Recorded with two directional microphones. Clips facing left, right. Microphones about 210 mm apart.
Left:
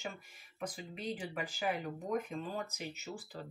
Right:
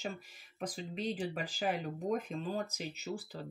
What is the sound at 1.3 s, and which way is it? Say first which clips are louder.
Speech: right 1 dB; 30° right (ahead or behind).